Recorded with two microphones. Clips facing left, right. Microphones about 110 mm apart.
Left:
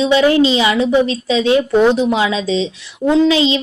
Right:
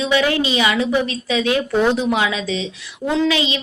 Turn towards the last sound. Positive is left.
turn(degrees=25)  # may be behind; listen again after turning